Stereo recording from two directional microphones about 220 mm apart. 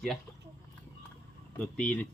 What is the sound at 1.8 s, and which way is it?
Speech, 5° left (ahead or behind).